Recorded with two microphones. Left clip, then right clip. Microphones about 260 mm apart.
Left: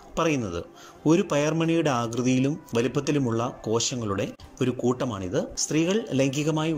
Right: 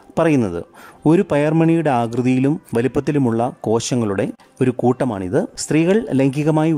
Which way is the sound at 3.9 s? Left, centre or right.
Right.